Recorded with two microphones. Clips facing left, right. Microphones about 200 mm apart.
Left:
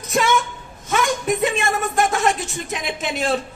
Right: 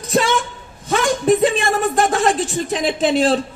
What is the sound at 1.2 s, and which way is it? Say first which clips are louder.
A woman's voice: right 5 dB; 35° right (ahead or behind).